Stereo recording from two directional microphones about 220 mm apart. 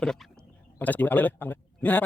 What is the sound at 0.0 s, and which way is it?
Speech, 5° left (ahead or behind).